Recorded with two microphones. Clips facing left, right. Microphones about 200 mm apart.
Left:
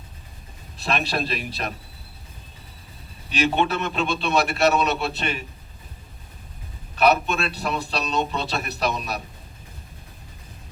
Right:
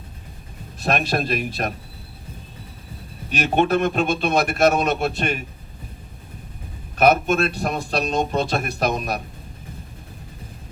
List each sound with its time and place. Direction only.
0.8 s a man's voice: 45° right (ahead or behind)
3.2 s a man's voice: 45° right (ahead or behind)
6.9 s a man's voice: 45° right (ahead or behind)